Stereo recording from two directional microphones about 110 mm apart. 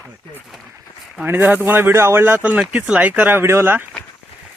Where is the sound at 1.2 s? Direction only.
15° right (ahead or behind).